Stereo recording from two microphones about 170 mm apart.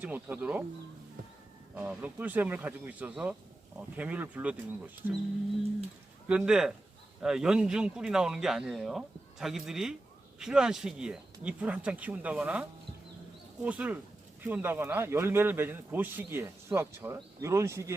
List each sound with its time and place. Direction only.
0.0 s speech: 10° right (ahead or behind)
1.7 s speech: 10° right (ahead or behind)
6.2 s speech: 5° right (ahead or behind)